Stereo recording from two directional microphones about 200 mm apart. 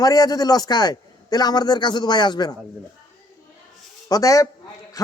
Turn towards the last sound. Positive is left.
turn(degrees=15)  # may be behind; listen again after turning